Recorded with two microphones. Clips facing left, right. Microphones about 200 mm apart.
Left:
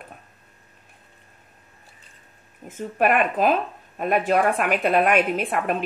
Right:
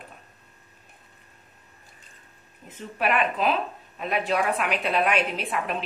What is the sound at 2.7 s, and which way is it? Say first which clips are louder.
Speech: left 5 dB; 50° left (ahead or behind).